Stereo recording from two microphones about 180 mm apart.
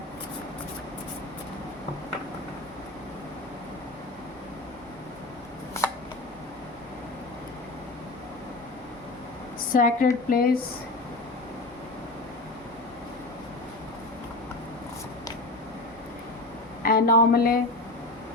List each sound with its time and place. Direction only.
9.7 s speech: 50° left (ahead or behind)
16.8 s speech: 55° left (ahead or behind)